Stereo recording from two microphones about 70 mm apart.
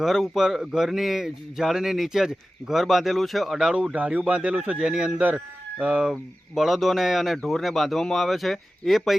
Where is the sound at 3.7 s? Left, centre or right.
Centre.